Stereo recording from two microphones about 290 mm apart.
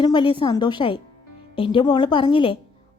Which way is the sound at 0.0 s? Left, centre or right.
Centre.